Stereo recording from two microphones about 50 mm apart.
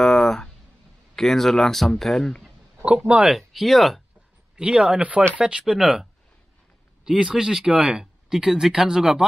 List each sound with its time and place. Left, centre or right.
0.0 s a sound: centre
1.1 s speech: centre
2.8 s speech: right
3.3 s speech: centre
4.6 s speech: centre
5.7 s speech: centre
7.1 s speech: centre